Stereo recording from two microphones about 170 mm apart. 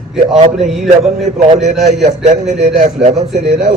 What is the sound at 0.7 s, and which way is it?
Mantra, centre (ahead or behind).